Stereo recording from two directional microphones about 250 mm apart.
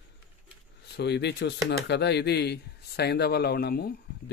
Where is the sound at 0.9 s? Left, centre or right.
Left.